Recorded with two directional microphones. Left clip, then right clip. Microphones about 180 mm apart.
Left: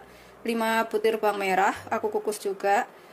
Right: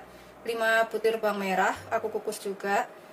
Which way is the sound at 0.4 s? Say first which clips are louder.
Right 1 dB; 50° left (ahead or behind).